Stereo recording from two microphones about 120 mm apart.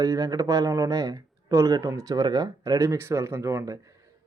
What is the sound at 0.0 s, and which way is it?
Speech, 30° right (ahead or behind).